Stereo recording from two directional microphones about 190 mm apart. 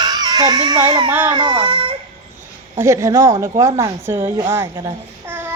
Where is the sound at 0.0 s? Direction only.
20° right (ahead or behind).